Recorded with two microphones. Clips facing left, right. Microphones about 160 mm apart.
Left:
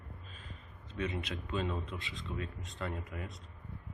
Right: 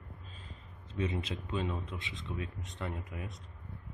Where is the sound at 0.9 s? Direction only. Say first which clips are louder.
Right 2 dB; 25° right (ahead or behind).